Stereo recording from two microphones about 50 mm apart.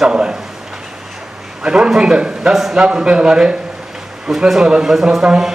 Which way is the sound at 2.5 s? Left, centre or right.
Centre.